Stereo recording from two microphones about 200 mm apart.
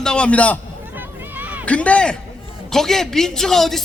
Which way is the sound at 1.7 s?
5° left (ahead or behind).